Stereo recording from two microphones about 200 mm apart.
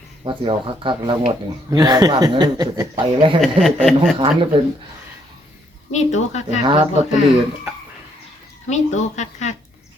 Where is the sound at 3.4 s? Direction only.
Centre (ahead or behind).